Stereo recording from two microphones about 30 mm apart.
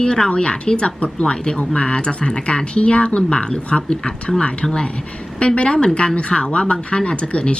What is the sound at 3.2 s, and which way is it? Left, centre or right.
Speech, left.